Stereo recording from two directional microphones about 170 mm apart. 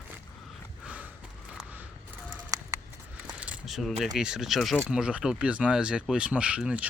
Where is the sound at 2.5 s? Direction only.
20° right (ahead or behind).